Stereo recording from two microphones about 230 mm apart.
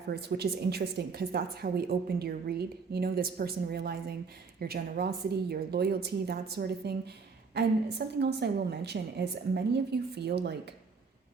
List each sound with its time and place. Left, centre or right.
0.2 s a woman's voice: right